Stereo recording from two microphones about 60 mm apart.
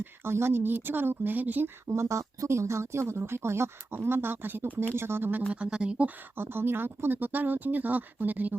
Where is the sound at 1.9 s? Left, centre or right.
Right.